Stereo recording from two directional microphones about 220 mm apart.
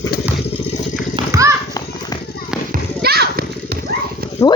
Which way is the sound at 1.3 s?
15° right (ahead or behind).